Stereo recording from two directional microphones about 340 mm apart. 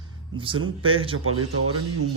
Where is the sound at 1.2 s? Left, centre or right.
Right.